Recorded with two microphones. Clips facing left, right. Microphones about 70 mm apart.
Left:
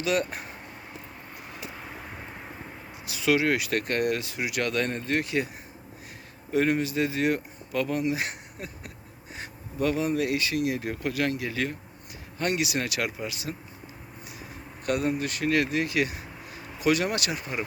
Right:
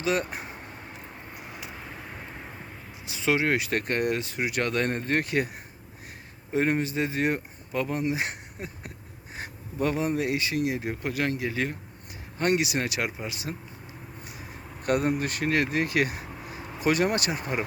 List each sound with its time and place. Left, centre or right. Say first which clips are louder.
0.0 s speech: left 1 dB; right
1.8 s vehicle: even; centre
3.1 s speech: left 1 dB; right
6.5 s speech: left 1 dB; right
14.8 s speech: right 2 dB; right